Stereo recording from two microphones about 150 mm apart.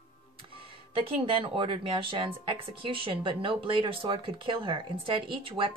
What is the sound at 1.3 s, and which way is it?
Speech, 35° right (ahead or behind).